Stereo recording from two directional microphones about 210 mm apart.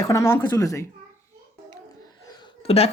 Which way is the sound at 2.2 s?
20° left (ahead or behind).